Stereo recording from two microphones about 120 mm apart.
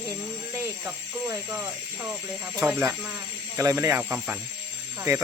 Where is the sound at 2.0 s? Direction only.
20° right (ahead or behind).